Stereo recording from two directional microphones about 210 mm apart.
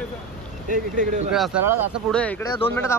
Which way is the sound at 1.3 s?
Centre (ahead or behind).